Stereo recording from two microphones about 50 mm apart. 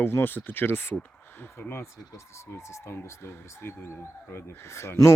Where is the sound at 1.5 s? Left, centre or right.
Left.